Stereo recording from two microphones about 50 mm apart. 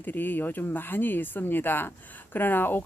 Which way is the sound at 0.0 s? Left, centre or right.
Left.